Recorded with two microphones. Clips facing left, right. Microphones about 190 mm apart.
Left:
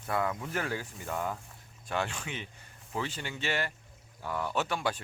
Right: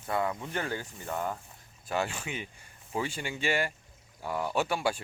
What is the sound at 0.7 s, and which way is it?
Speech, centre (ahead or behind).